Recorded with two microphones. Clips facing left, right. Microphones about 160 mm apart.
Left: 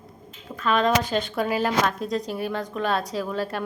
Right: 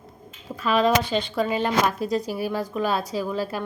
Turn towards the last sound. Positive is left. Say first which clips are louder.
# right 1 dB
turn(degrees=0)  # may be behind; listen again after turning